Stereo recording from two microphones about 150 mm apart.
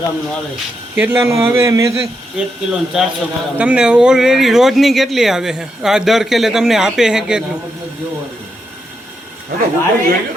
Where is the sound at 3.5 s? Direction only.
5° right (ahead or behind).